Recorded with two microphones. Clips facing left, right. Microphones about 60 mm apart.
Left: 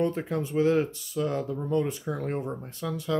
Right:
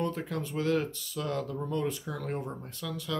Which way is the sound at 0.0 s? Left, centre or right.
Left.